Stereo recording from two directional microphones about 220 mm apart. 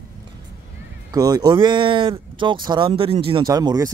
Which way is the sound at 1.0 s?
15° right (ahead or behind).